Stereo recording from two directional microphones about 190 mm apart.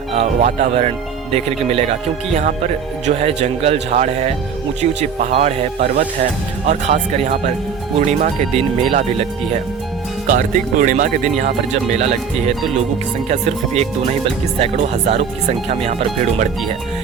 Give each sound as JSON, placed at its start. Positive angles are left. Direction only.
{"t": 0.1, "sound": "speech", "side_deg": -35}
{"t": 3.2, "sound": "speech", "side_deg": -30}
{"t": 6.7, "sound": "speech", "side_deg": -35}